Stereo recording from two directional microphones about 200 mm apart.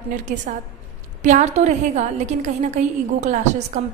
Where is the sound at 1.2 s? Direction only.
35° right (ahead or behind).